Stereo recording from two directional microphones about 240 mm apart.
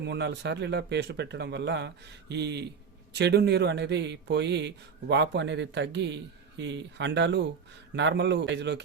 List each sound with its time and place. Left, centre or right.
0.0 s speech: right